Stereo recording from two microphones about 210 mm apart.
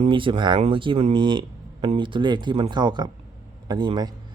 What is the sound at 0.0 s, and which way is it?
Speech, 25° right (ahead or behind).